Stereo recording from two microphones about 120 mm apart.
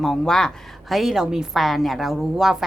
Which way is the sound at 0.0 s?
5° left (ahead or behind).